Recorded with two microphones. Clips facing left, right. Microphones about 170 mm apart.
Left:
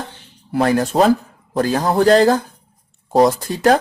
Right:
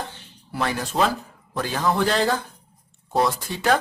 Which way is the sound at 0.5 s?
45° left (ahead or behind).